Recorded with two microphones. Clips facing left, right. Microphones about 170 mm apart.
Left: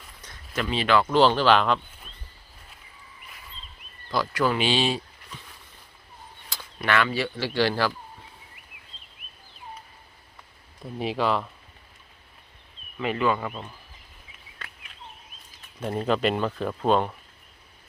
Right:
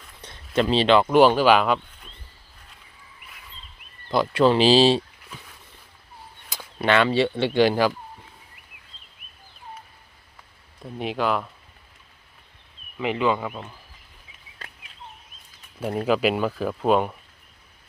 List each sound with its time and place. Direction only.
0.2 s speech: 30° right (ahead or behind); by 1.8 s 10° right (ahead or behind)
4.1 s speech: 25° right (ahead or behind)
6.5 s speech: 20° right (ahead or behind)
10.8 s speech: centre (ahead or behind)
13.0 s speech: 15° right (ahead or behind)
15.8 s speech: 5° right (ahead or behind)